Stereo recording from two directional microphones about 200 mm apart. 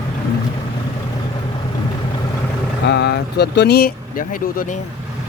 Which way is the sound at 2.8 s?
55° left (ahead or behind).